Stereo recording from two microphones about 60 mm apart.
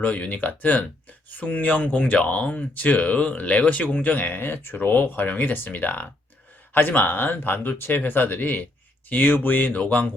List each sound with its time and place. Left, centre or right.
0.0 s speech: left